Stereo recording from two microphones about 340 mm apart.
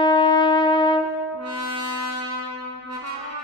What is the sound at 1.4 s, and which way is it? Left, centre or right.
French horn, right.